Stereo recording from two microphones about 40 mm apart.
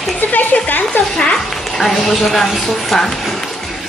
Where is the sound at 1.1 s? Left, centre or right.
Centre.